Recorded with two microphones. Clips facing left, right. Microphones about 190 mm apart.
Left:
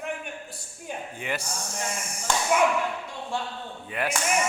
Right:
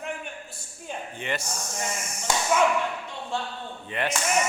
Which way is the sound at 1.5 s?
30° left (ahead or behind).